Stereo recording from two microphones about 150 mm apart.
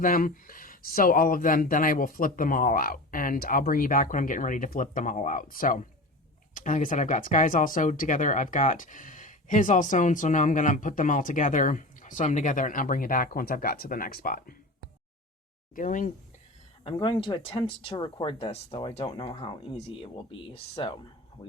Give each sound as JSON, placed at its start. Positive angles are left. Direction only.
{"t": 0.0, "sound": "speech", "side_deg": 65}
{"t": 15.7, "sound": "speech", "side_deg": 60}
{"t": 16.8, "sound": "speech", "side_deg": 30}